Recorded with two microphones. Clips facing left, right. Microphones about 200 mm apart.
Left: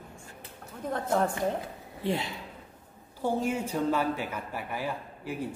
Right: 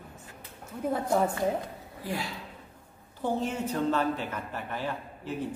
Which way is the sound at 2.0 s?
25° left (ahead or behind).